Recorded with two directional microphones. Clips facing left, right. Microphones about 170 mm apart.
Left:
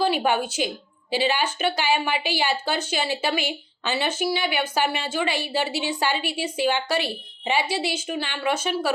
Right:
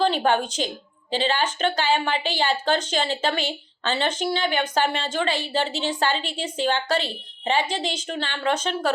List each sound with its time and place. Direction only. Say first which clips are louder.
0.0 s speech: right 1 dB; 10° left (ahead or behind)